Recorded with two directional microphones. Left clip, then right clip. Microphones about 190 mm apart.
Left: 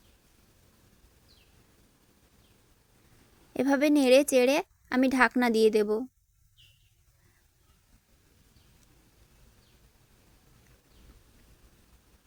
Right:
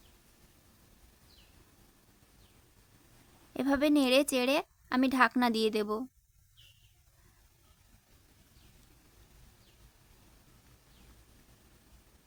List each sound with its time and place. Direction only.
3.5 s a woman's voice: 20° left (ahead or behind)